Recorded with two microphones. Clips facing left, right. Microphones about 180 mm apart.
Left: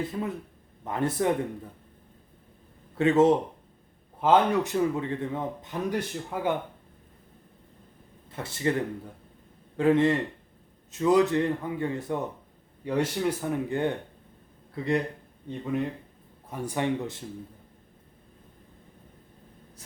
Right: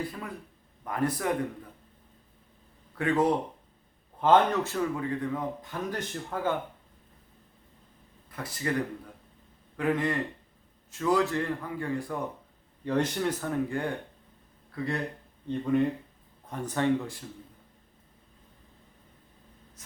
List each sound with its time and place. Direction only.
0.0 s speech: 25° left (ahead or behind)
2.9 s speech: 25° left (ahead or behind)
4.2 s a man's voice: 10° left (ahead or behind)
8.3 s speech: 25° left (ahead or behind)
9.7 s speech: 25° left (ahead or behind)
12.8 s a man's voice: 10° left (ahead or behind)
15.4 s a man's voice: 5° left (ahead or behind); by 17.2 s 20° left (ahead or behind)